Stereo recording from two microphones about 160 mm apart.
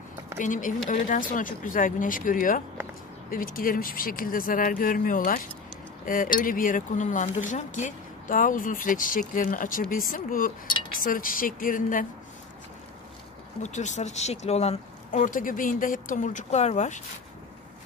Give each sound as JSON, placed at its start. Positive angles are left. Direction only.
{"t": 0.4, "sound": "speech", "side_deg": 55}
{"t": 13.6, "sound": "speech", "side_deg": 50}